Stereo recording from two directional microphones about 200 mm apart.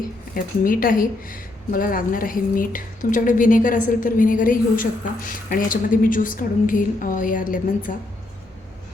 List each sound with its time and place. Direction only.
0.6 s a woman's voice: 45° left (ahead or behind)